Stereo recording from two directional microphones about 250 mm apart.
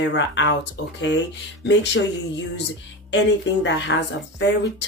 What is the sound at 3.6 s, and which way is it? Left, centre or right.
Speech, left.